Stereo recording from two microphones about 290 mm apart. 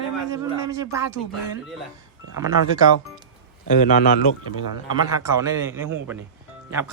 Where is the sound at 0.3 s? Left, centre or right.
Centre.